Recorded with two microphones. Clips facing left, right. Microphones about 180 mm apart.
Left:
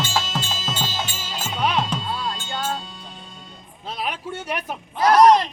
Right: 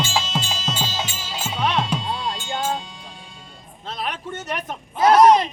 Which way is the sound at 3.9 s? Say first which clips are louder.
Even; 10° left (ahead or behind).